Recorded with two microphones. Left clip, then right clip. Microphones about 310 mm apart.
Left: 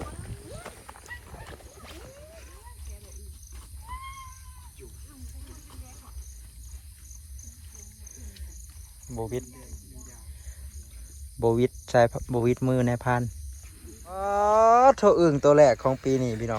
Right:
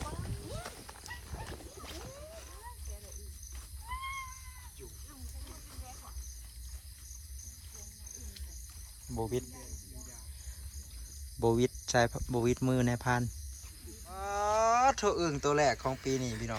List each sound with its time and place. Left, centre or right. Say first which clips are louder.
1.4 s a sound: left 1 dB; centre
9.0 s insect: left 3 dB; centre
11.3 s speech: left 6 dB; centre